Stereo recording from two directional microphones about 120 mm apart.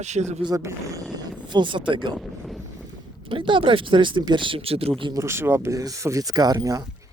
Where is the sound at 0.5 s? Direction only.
25° right (ahead or behind).